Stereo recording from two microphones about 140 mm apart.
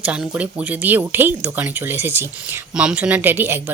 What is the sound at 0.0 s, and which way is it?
Speech, 5° right (ahead or behind).